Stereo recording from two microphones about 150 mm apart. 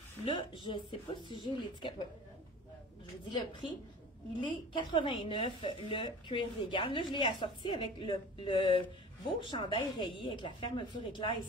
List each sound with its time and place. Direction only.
0.2 s a woman's voice: 35° left (ahead or behind)
3.3 s a woman's voice: 30° left (ahead or behind)